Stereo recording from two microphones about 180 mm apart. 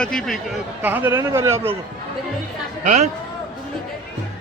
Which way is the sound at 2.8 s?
40° right (ahead or behind).